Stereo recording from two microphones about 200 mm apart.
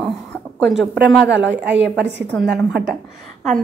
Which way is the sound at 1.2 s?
60° right (ahead or behind).